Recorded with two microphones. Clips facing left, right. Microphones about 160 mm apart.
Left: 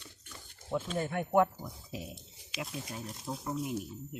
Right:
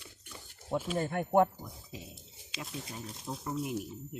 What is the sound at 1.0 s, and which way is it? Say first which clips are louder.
Speech: right 1 dB; 35° right (ahead or behind).